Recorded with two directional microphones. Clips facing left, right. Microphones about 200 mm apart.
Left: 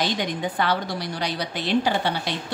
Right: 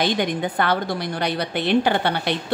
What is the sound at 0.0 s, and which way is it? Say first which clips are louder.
A woman's voice: right 4 dB; 55° right (ahead or behind).